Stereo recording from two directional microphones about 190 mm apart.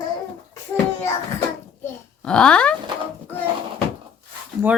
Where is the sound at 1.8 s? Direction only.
5° left (ahead or behind).